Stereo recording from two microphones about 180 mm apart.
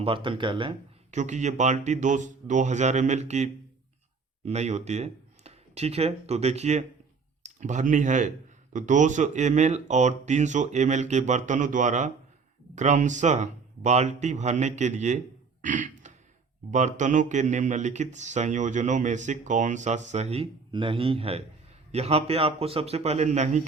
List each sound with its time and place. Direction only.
0.0 s speech: 30° right (ahead or behind)
1.1 s speech: 40° right (ahead or behind)
15.6 s a sound: 45° right (ahead or behind)
16.7 s speech: 40° right (ahead or behind)